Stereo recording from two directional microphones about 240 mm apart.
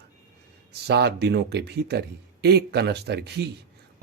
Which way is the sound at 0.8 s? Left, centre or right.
Right.